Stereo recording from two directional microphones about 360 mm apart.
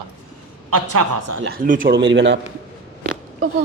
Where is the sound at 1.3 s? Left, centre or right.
Right.